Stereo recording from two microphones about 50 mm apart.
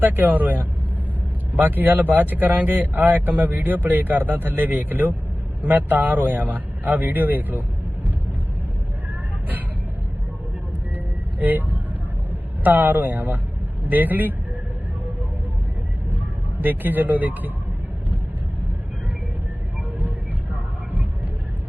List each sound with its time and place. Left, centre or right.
0.0 s speech: right
10.9 s vehicle: right
12.6 s speech: right
16.6 s speech: right
20.0 s vehicle: right